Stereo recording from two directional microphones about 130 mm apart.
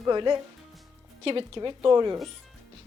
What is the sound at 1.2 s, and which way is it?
Speech, 45° right (ahead or behind).